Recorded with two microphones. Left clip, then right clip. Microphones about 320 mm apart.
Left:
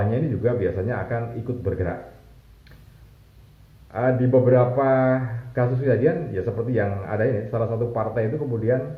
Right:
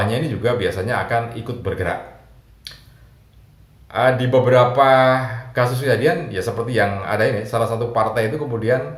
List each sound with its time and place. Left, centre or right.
0.1 s speech: right
3.8 s speech: right